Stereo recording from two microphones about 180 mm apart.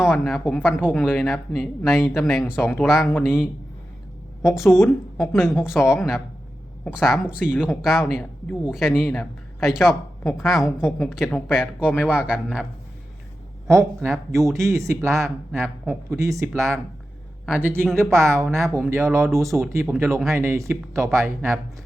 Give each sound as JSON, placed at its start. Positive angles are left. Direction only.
{"t": 0.0, "sound": "speech", "side_deg": 0}
{"t": 4.7, "sound": "a woman's voice", "side_deg": 15}
{"t": 5.3, "sound": "speech", "side_deg": 0}
{"t": 13.7, "sound": "speech", "side_deg": -15}
{"t": 14.1, "sound": "speech", "side_deg": 0}
{"t": 14.5, "sound": "speech", "side_deg": -15}
{"t": 16.5, "sound": "speech", "side_deg": 0}
{"t": 17.4, "sound": "speech", "side_deg": -10}
{"t": 19.6, "sound": "speech", "side_deg": 0}
{"t": 20.0, "sound": "speech", "side_deg": -15}